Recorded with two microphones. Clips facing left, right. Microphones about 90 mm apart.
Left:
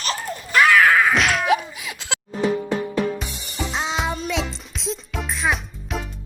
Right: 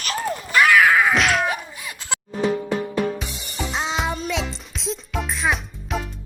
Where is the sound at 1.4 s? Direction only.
90° left.